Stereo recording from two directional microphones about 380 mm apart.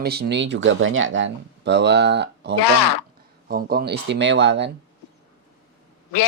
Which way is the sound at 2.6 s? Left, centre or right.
Left.